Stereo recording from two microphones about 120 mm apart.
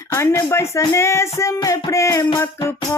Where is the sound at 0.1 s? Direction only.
25° left (ahead or behind).